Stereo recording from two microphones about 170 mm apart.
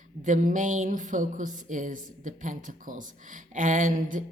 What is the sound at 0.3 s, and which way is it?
Speech, 50° right (ahead or behind).